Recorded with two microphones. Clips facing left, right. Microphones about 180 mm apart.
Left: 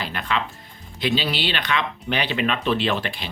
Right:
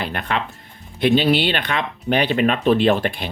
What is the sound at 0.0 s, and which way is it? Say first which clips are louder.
Music: right 2 dB; 55° right (ahead or behind).